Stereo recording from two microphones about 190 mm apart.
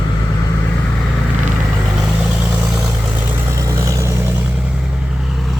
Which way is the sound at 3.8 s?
15° right (ahead or behind).